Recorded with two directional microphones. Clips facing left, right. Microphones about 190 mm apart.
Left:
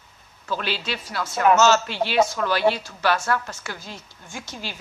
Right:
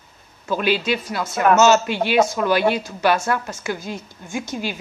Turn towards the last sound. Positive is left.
turn(degrees=-15)  # may be behind; listen again after turning